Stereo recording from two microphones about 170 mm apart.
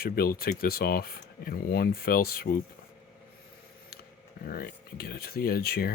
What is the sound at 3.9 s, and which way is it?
Speech, 65° left (ahead or behind).